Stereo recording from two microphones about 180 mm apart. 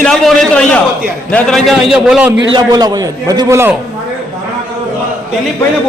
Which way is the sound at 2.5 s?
20° right (ahead or behind).